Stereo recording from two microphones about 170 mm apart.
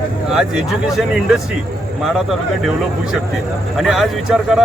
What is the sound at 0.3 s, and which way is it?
Speech, 5° right (ahead or behind).